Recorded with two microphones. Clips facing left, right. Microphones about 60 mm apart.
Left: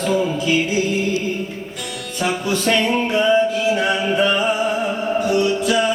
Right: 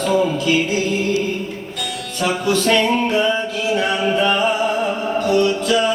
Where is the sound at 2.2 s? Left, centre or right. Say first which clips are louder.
Right 2 dB; centre.